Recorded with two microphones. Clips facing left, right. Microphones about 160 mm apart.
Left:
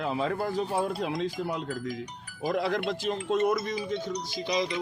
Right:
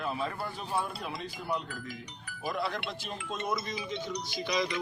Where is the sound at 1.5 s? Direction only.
45° left (ahead or behind).